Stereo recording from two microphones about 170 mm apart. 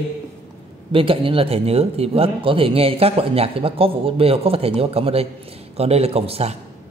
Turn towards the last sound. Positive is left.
turn(degrees=-35)  # may be behind; listen again after turning